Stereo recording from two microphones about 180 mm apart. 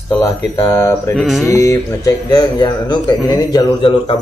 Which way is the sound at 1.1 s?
Centre (ahead or behind).